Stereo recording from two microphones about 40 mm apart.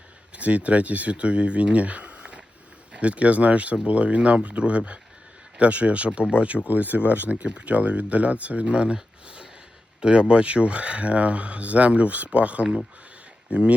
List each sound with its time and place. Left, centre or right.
0.3 s speech: right
6.7 s speech: right
7.3 s speech: right